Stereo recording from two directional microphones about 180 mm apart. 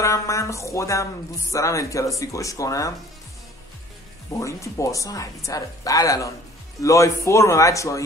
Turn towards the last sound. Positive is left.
turn(degrees=15)  # may be behind; listen again after turning